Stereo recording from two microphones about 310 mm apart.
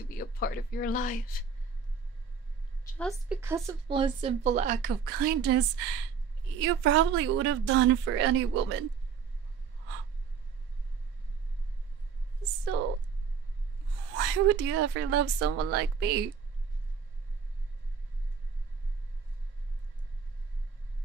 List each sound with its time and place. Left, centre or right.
0.4 s speech: left
2.8 s a woman's voice: centre; by 8.7 s right
14.1 s a woman's voice: right
15.7 s a woman's voice: right